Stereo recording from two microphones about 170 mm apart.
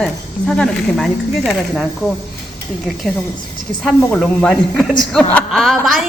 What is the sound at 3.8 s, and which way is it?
Speech, centre (ahead or behind).